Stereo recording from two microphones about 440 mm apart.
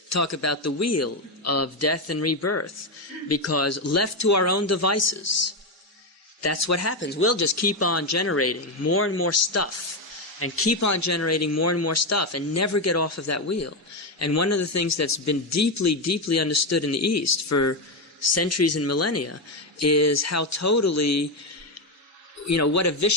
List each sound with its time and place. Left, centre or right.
0.1 s a man's voice: left
22.4 s a man's voice: left